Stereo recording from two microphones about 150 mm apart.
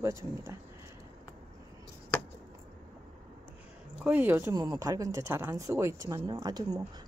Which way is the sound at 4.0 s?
10° right (ahead or behind).